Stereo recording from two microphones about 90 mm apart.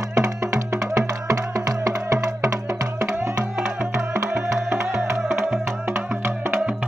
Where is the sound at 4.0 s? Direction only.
10° right (ahead or behind).